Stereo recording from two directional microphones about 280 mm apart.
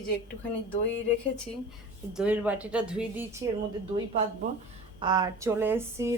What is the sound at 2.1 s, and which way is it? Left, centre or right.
A woman's voice, centre.